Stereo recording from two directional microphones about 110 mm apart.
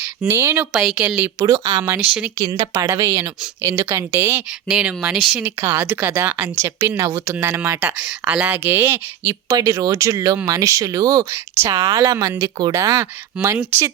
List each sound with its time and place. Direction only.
0.3 s speech: 25° right (ahead or behind)
0.7 s a woman's voice: 5° right (ahead or behind)
1.2 s speech: 30° right (ahead or behind)
1.8 s speech: 25° right (ahead or behind)
2.4 s speech: 35° right (ahead or behind)
4.7 s a woman's voice: 10° right (ahead or behind); by 11.7 s 30° right (ahead or behind)
11.9 s speech: 40° right (ahead or behind)
13.3 s a woman's voice: 10° right (ahead or behind)
13.7 s speech: 25° right (ahead or behind)